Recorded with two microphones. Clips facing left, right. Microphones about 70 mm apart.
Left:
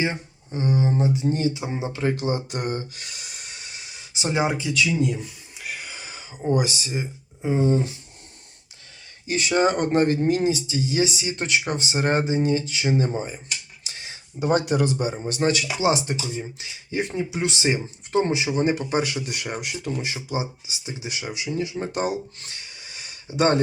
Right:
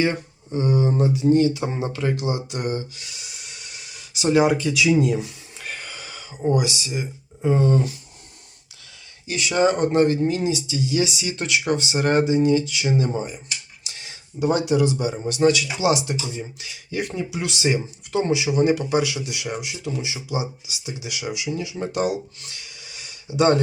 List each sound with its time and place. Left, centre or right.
0.0 s speech: left
1.6 s speech: centre
1.9 s speech: left
4.7 s speech: centre
5.9 s a sound: left
6.5 s speech: left
7.4 s speech: centre
9.2 s speech: left
13.8 s a sound: left
15.3 s speech: left
20.2 s speech: left